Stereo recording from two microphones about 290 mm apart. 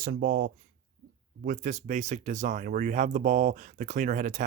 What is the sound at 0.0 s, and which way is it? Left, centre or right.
Speech, right.